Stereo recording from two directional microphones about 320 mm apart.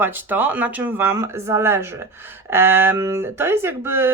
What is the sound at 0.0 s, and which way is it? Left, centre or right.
Speech, centre.